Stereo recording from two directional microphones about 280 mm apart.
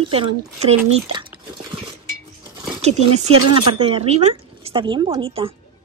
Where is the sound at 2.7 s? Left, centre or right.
Right.